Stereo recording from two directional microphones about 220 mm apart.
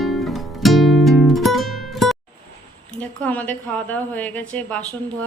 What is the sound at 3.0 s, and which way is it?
A woman's voice, 5° left (ahead or behind).